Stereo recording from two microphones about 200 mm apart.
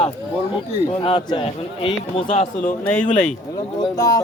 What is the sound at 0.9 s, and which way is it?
Speech, 25° left (ahead or behind).